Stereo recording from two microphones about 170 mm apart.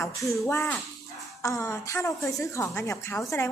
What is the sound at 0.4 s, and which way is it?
A woman's voice, 15° left (ahead or behind).